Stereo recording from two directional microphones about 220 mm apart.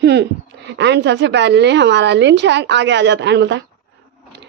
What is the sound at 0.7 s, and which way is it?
Speech, 50° right (ahead or behind).